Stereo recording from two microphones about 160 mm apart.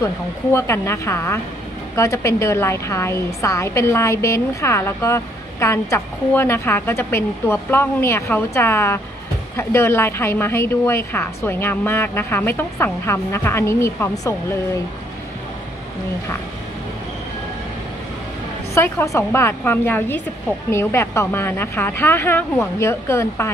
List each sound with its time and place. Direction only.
0.0 s a woman's voice: 15° left (ahead or behind)
18.8 s a woman's voice: 15° left (ahead or behind)